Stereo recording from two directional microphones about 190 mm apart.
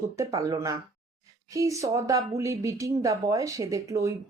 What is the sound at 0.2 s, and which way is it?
Speech, 15° right (ahead or behind).